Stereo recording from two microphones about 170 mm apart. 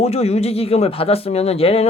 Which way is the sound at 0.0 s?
40° left (ahead or behind).